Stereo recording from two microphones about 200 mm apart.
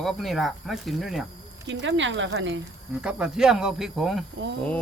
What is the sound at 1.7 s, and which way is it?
Speech, 65° right (ahead or behind).